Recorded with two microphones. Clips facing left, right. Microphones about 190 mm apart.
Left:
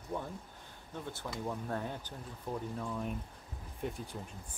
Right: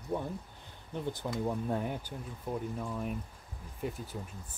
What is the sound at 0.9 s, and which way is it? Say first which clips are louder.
Speech: right 6 dB; 15° right (ahead or behind).